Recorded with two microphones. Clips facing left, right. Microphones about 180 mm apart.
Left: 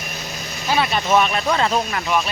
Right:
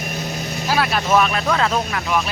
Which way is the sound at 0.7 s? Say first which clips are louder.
Even; 5° right (ahead or behind).